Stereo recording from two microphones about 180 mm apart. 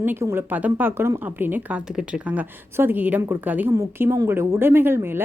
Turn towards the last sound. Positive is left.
turn(degrees=-10)  # may be behind; listen again after turning